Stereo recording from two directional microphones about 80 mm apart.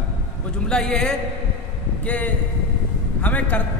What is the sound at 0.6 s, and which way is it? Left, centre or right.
A man's voice, centre.